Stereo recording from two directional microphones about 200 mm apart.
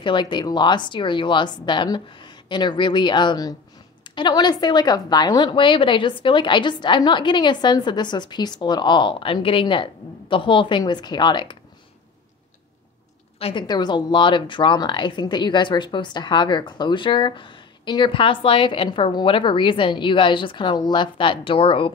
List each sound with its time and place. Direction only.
0.0 s speech: 25° left (ahead or behind)
13.4 s speech: 25° left (ahead or behind)